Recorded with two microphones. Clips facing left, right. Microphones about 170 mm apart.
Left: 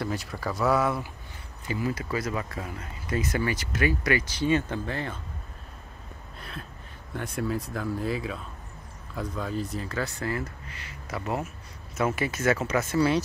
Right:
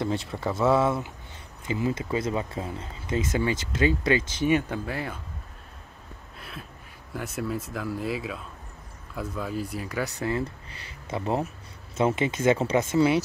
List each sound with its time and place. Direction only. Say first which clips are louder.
0.0 s speech: right 3 dB; 25° right (ahead or behind); by 5.2 s 10° right (ahead or behind)
7.2 s speech: left 1 dB; 5° right (ahead or behind); by 10.5 s 20° right (ahead or behind)
10.7 s speech: right 3 dB; 30° right (ahead or behind)